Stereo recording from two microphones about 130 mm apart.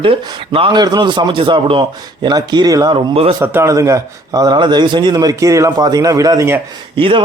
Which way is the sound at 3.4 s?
20° right (ahead or behind).